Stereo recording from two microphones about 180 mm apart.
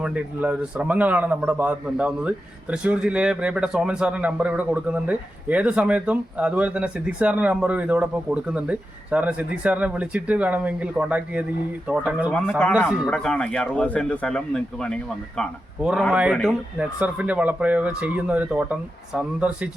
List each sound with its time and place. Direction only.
0.0 s a man's voice: 5° right (ahead or behind)
12.3 s a man's voice: 5° left (ahead or behind)